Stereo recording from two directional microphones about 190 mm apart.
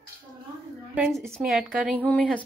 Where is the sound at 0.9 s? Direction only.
5° right (ahead or behind).